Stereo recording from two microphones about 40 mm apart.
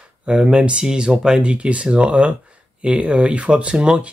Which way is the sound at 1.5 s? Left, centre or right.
Right.